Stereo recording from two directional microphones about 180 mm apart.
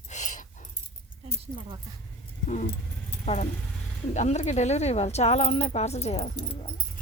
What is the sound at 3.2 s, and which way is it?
Speech, 40° left (ahead or behind).